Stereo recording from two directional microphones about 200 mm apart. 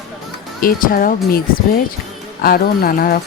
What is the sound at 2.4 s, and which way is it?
Speech, 50° left (ahead or behind).